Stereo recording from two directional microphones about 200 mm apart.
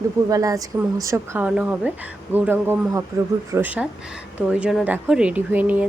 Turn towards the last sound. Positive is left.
turn(degrees=-10)  # may be behind; listen again after turning